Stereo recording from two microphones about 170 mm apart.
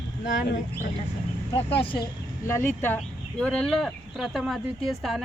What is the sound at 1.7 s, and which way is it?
Speech, 30° left (ahead or behind).